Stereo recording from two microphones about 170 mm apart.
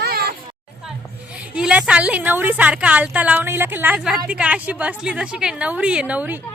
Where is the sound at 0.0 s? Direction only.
65° right (ahead or behind).